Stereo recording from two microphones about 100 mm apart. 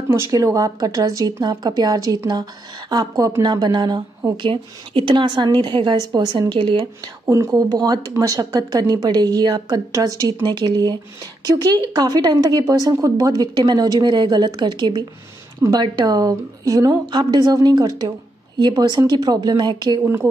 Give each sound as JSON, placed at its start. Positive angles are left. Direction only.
{"t": 0.3, "sound": "a woman's voice", "side_deg": -35}
{"t": 7.2, "sound": "a woman's voice", "side_deg": -30}